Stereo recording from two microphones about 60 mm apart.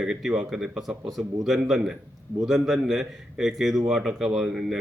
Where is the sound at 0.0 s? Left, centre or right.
Centre.